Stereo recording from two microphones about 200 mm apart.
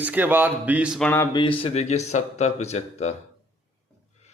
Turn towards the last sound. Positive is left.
turn(degrees=35)  # may be behind; listen again after turning